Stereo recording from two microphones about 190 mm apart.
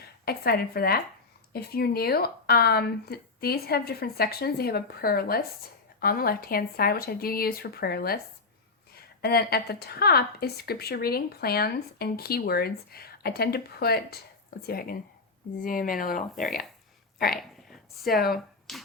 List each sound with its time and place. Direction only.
0.0 s a woman's voice: 55° left (ahead or behind)
17.3 s a sound: centre (ahead or behind)
18.0 s speech: 55° left (ahead or behind)
18.3 s speech: centre (ahead or behind)